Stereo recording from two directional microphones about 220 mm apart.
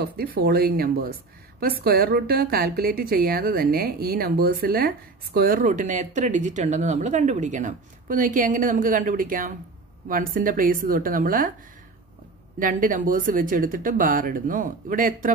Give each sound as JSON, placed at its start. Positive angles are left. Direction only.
{"t": 0.0, "sound": "a woman's voice", "side_deg": -45}
{"t": 12.5, "sound": "a woman's voice", "side_deg": -35}